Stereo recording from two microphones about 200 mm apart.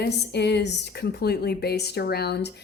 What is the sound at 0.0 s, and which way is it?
A woman's voice, 55° left (ahead or behind).